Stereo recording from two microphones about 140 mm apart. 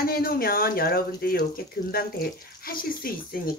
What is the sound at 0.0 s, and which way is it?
Speech, 90° left.